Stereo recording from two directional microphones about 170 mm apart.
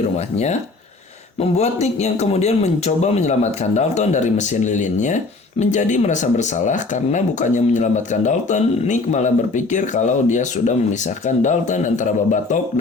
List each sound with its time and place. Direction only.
1.4 s a man's voice: 40° left (ahead or behind)